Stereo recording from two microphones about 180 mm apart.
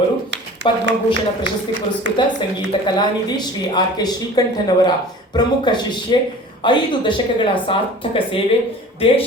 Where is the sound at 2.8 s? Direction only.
25° left (ahead or behind).